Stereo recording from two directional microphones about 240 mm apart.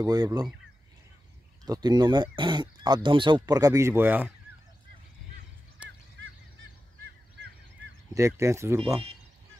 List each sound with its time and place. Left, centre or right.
0.0 s speech: centre
1.7 s speech: centre
5.8 s goose: centre
8.1 s speech: centre